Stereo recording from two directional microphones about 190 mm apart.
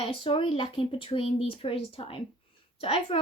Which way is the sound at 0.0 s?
30° left (ahead or behind).